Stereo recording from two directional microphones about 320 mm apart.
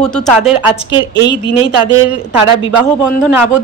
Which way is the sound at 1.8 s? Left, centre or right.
Centre.